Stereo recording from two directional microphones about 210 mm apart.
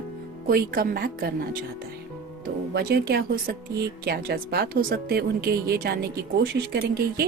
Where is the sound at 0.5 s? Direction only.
45° right (ahead or behind).